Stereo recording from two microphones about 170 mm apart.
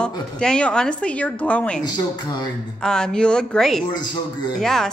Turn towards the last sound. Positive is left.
turn(degrees=5)  # may be behind; listen again after turning